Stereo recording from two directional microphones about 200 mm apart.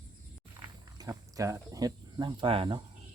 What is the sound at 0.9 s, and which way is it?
Speech, 15° right (ahead or behind).